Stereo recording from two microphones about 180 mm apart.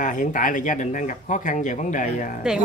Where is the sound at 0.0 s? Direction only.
45° left (ahead or behind).